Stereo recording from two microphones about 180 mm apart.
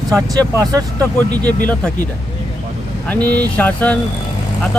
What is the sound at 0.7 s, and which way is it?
Speech, 20° right (ahead or behind).